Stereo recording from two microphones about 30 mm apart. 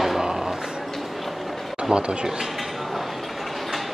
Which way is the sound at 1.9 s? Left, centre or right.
Right.